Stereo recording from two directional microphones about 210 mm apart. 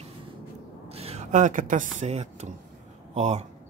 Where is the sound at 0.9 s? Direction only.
30° right (ahead or behind).